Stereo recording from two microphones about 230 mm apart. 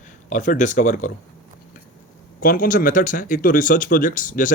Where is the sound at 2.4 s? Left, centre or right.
Left.